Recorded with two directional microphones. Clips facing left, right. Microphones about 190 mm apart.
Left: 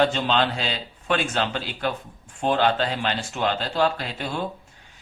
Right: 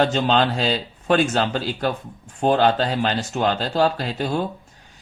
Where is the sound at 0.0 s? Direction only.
45° right (ahead or behind).